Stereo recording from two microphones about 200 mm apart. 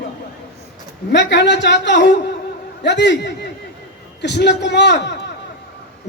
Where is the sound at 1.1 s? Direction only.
60° left (ahead or behind).